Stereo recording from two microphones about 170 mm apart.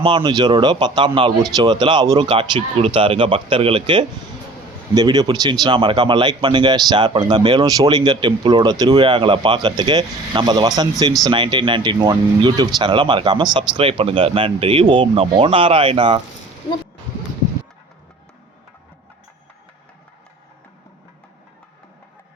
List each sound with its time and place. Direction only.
0.0 s a man's voice: 25° right (ahead or behind)